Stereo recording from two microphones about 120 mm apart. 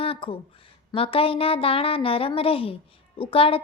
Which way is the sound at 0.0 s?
50° left (ahead or behind).